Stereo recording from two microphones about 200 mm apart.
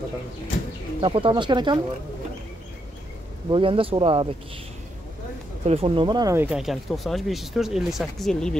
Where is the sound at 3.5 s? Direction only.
25° right (ahead or behind).